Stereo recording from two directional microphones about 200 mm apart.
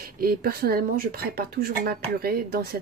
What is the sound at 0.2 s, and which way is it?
Speech, 50° right (ahead or behind).